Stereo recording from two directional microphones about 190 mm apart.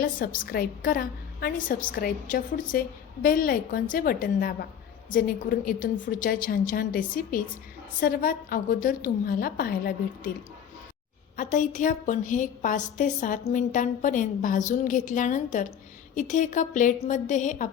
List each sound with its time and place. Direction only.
0.0 s a woman's voice: 45° left (ahead or behind)
11.3 s a woman's voice: 40° left (ahead or behind)